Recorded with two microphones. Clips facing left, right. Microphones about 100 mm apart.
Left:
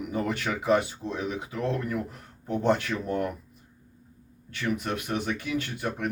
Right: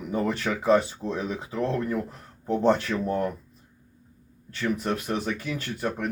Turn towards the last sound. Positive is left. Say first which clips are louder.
# even
turn(degrees=-40)  # may be behind; listen again after turning